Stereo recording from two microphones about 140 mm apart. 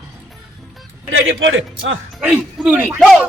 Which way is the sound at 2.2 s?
10° right (ahead or behind).